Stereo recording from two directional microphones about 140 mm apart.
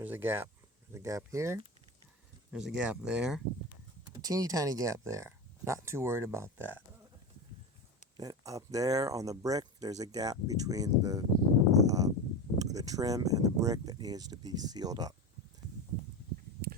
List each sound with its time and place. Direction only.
0.0 s speech: 15° right (ahead or behind)
2.5 s speech: 5° right (ahead or behind)
4.1 s speech: 25° right (ahead or behind)
8.1 s speech: 25° right (ahead or behind)
11.7 s a sound: 25° right (ahead or behind)
12.5 s speech: 25° right (ahead or behind)